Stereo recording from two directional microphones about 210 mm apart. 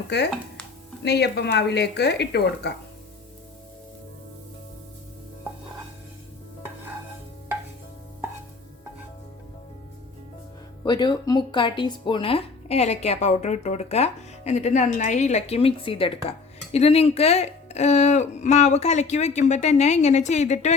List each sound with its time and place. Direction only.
0.1 s speech: 50° left (ahead or behind)
10.8 s speech: 20° left (ahead or behind)